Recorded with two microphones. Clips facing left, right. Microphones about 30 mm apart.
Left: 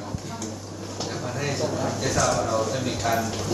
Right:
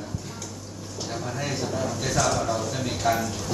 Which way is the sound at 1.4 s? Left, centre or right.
Centre.